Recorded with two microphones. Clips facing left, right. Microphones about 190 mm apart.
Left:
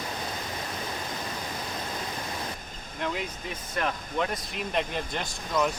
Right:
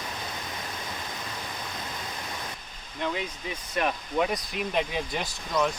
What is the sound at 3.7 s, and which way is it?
Speech, 10° right (ahead or behind).